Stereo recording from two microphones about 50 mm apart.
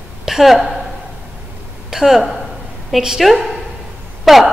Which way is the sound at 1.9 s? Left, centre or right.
Centre.